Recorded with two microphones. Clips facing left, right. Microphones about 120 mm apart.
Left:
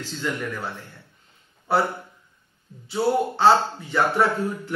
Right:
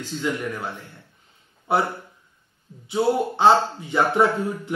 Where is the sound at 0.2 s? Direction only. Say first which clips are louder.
Right 2 dB; 10° right (ahead or behind).